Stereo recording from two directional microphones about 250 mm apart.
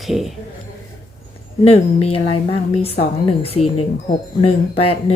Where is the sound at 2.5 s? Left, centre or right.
Left.